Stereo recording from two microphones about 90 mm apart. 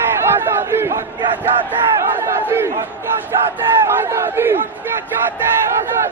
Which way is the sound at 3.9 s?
30° right (ahead or behind).